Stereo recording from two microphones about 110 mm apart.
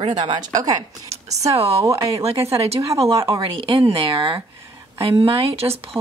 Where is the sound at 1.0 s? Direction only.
85° right.